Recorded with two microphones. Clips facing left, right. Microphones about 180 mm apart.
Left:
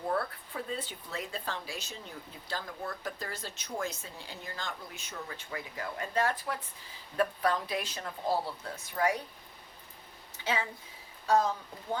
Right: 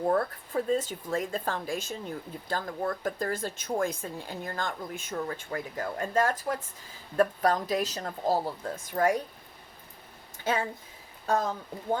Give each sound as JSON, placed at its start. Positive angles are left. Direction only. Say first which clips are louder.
{"t": 0.1, "sound": "speech", "louder": "right 2 dB", "side_deg": -45}
{"t": 10.3, "sound": "a sound", "louder": "right 4 dB", "side_deg": -50}
{"t": 11.3, "sound": "speech", "louder": "left 1 dB", "side_deg": -50}